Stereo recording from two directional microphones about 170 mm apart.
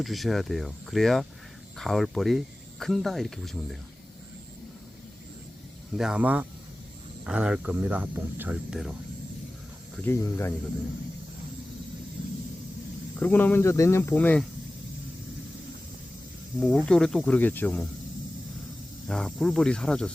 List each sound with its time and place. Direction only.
0.0 s speech: centre (ahead or behind)
5.9 s speech: 5° right (ahead or behind)
9.9 s speech: 10° left (ahead or behind)
13.1 s speech: 10° left (ahead or behind)
16.6 s speech: 5° left (ahead or behind)
19.0 s speech: 5° left (ahead or behind)